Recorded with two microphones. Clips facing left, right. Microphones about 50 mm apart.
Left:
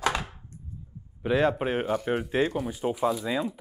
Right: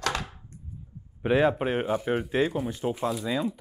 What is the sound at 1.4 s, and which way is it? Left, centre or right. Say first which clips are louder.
Speech: right 1 dB; centre.